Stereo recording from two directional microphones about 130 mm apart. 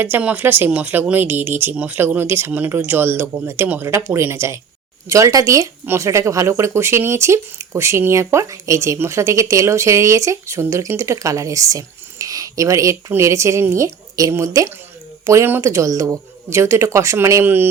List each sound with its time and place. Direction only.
0.0 s speech: 15° right (ahead or behind)